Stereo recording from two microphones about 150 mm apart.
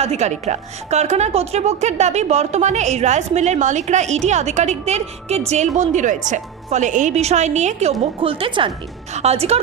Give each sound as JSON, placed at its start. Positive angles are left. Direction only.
{"t": 0.0, "sound": "a woman's voice", "side_deg": -45}
{"t": 8.2, "sound": "speech", "side_deg": -35}
{"t": 9.1, "sound": "a woman's voice", "side_deg": -45}